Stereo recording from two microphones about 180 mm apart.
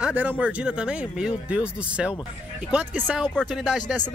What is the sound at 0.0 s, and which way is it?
Speech, 10° right (ahead or behind).